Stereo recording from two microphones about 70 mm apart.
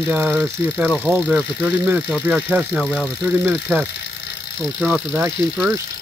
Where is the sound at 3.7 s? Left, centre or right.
Centre.